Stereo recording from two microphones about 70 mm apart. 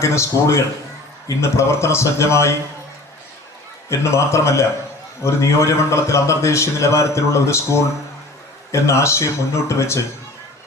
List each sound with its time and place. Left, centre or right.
0.0 s a man's voice: left
3.8 s a man's voice: left